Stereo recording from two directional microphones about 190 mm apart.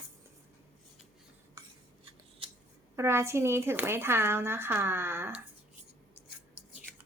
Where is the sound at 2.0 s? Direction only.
25° right (ahead or behind).